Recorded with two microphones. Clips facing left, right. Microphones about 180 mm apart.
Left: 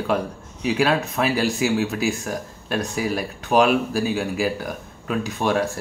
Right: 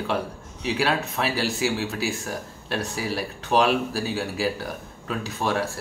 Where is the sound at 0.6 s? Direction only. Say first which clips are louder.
Left 4 dB; 15° left (ahead or behind).